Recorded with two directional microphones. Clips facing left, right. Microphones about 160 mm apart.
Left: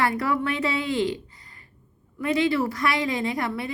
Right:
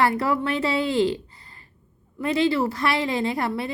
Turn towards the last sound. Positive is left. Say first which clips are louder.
# right 2 dB
turn(degrees=-30)  # may be behind; listen again after turning